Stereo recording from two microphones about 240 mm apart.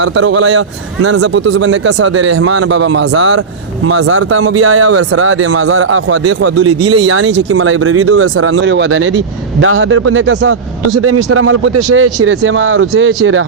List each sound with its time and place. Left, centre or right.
0.0 s a man's voice: right
1.0 s a man's voice: right
6.4 s speech: right